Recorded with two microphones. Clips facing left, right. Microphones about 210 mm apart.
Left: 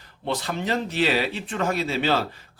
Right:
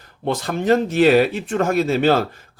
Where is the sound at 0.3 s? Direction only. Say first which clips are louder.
Right 8 dB; 50° right (ahead or behind).